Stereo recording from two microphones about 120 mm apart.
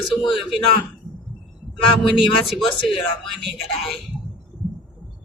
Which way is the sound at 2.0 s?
Centre (ahead or behind).